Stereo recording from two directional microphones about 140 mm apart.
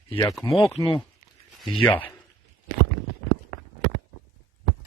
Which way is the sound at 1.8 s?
10° left (ahead or behind).